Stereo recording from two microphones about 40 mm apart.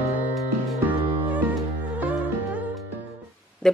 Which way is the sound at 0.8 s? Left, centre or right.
Right.